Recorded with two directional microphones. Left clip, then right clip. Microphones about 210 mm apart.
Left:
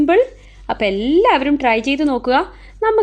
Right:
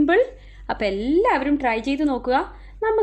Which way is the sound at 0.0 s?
15° left (ahead or behind).